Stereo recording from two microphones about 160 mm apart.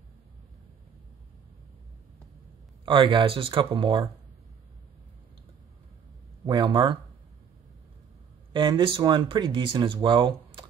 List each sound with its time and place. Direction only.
2.8 s speech: 30° right (ahead or behind)
6.4 s speech: 30° right (ahead or behind)
8.5 s speech: 30° right (ahead or behind)